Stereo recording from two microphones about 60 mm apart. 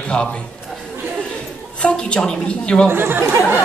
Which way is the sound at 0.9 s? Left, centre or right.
Right.